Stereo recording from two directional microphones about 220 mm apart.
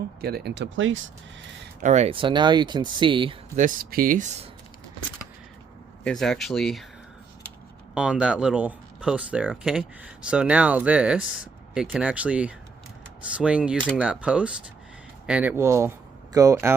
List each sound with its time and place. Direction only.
0.2 s speech: 45° right (ahead or behind)
1.8 s speech: 30° right (ahead or behind)
6.1 s speech: centre (ahead or behind)
7.9 s speech: 5° right (ahead or behind)